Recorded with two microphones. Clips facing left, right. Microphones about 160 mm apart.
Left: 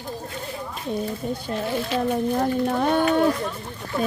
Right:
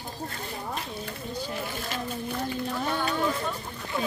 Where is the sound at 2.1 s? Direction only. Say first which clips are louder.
Left 11 dB; 60° left (ahead or behind).